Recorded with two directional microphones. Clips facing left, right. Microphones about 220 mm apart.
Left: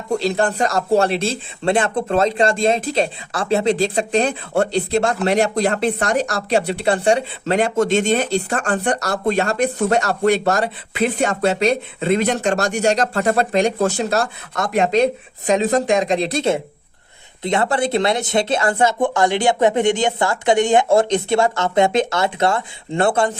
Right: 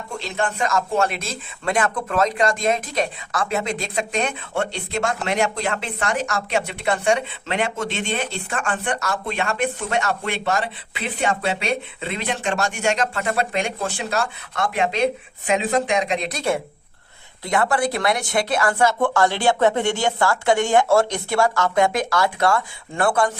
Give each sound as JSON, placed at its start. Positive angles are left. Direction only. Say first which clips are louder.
{"t": 0.1, "sound": "speech", "louder": "left 8 dB", "side_deg": 35}